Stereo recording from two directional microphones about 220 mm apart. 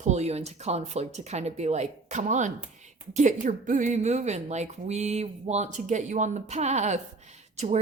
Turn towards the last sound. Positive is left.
turn(degrees=-30)  # may be behind; listen again after turning